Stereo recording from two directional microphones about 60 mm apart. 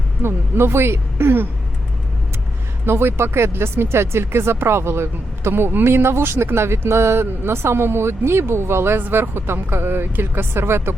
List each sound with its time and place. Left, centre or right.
0.2 s speech: right
2.8 s speech: right